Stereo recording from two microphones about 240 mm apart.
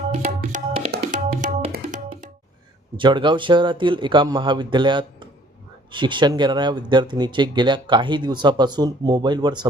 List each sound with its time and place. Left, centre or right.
0.1 s tabla: right
3.0 s speech: centre